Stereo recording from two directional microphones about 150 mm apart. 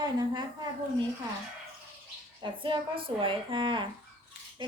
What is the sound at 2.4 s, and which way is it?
Speech, 35° right (ahead or behind).